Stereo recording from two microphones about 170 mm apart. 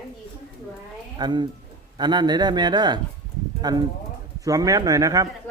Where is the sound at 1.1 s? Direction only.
25° right (ahead or behind).